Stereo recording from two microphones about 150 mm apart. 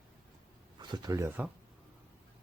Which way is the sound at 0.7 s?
25° right (ahead or behind).